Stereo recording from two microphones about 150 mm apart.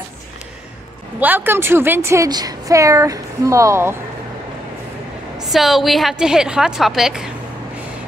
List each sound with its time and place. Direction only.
1.2 s a woman's voice: 15° right (ahead or behind)
5.4 s a woman's voice: centre (ahead or behind)